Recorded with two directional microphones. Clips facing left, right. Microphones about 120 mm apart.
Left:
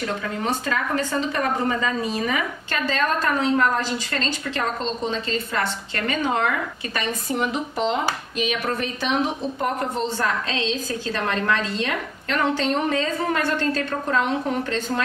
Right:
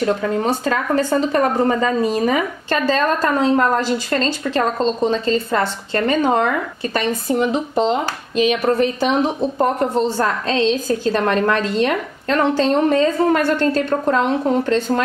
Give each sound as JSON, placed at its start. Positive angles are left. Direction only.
{"t": 0.0, "sound": "a woman's voice", "side_deg": -35}